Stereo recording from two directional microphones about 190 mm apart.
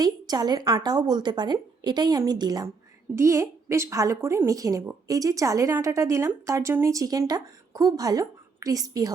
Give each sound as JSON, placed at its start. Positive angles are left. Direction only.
{"t": 0.0, "sound": "a woman's voice", "side_deg": -20}